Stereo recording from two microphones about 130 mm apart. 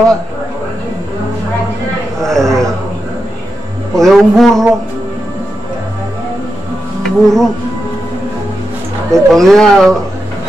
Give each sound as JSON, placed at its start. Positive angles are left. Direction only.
{"t": 2.2, "sound": "speech", "side_deg": 5}
{"t": 3.9, "sound": "speech", "side_deg": 0}
{"t": 7.0, "sound": "speech", "side_deg": 5}
{"t": 9.1, "sound": "speech", "side_deg": 5}